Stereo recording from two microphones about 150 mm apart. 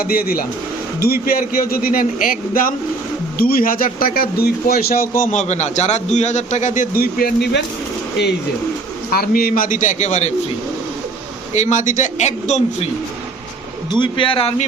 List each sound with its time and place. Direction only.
0.0 s speech: 80° left
9.0 s a man's voice: 80° left; by 10.3 s 50° left (ahead or behind)
11.5 s a man's voice: 55° left (ahead or behind)
13.9 s a man's voice: 30° left (ahead or behind)